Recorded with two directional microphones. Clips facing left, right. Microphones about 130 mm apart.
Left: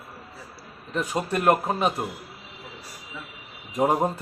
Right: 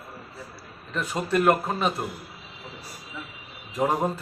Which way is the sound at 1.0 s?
15° left (ahead or behind).